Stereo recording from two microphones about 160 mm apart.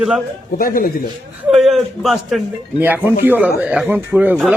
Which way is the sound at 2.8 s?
15° right (ahead or behind).